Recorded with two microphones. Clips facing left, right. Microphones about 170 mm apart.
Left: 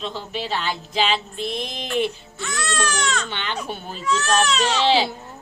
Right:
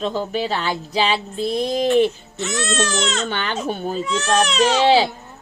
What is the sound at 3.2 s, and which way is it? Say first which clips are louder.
Speech: right 5 dB; 50° right (ahead or behind).